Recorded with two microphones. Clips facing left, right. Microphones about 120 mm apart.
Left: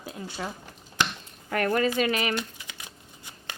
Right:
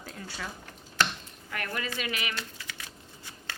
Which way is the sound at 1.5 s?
45° left (ahead or behind).